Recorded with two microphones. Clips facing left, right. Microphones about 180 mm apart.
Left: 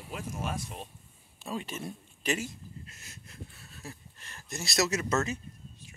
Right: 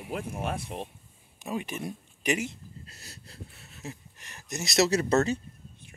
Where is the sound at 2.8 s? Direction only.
35° right (ahead or behind); by 4.8 s 20° right (ahead or behind).